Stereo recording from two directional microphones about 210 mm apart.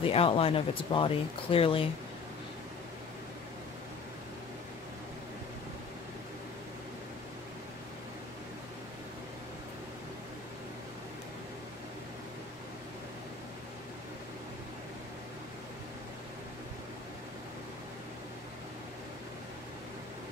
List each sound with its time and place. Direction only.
0.0 s speech: 25° left (ahead or behind)